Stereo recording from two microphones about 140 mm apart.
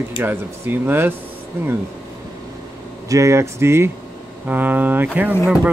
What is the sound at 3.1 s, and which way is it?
Speech, 20° right (ahead or behind).